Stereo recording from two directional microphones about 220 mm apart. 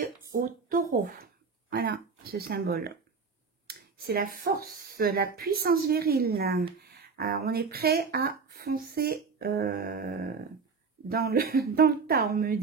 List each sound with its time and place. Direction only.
0.0 s a woman's voice: 40° right (ahead or behind)